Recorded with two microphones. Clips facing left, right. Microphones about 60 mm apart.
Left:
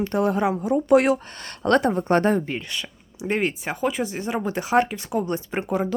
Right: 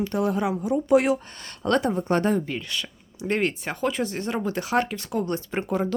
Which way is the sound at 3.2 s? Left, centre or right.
Centre.